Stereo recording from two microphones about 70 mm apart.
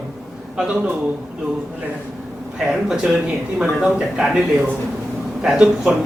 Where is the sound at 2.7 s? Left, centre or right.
Centre.